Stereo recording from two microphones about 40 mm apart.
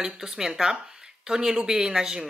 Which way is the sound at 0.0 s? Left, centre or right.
Centre.